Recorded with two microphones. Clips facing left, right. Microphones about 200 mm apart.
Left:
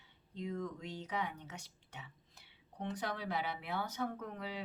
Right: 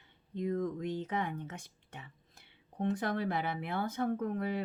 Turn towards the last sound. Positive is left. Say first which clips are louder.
# right 10 dB
turn(degrees=-50)  # may be behind; listen again after turning